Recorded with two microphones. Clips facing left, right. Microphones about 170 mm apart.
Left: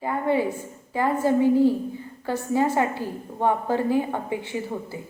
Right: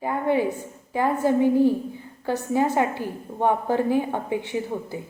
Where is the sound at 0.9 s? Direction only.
20° right (ahead or behind).